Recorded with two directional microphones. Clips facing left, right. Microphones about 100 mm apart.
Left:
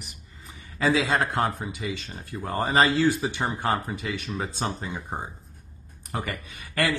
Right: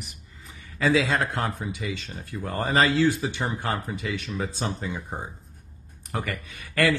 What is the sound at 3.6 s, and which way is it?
Speech, 35° left (ahead or behind).